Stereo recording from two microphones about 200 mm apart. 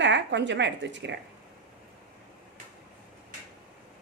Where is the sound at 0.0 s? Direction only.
60° right (ahead or behind).